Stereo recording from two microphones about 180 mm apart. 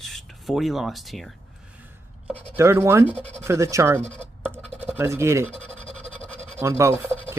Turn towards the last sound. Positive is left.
turn(degrees=-15)  # may be behind; listen again after turning